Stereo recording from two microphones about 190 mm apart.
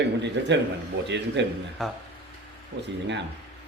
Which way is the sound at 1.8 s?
Centre (ahead or behind).